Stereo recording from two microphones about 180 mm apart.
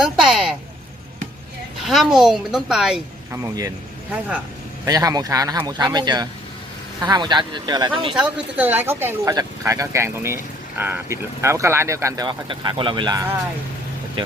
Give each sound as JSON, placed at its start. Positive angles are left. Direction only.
{"t": 0.0, "sound": "speech", "side_deg": -5}
{"t": 1.9, "sound": "a woman's voice", "side_deg": 0}
{"t": 3.3, "sound": "speech", "side_deg": -15}
{"t": 4.9, "sound": "speech", "side_deg": -20}
{"t": 8.1, "sound": "speech", "side_deg": -5}